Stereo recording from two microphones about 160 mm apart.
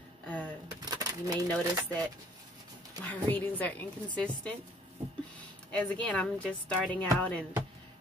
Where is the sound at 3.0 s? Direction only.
10° left (ahead or behind).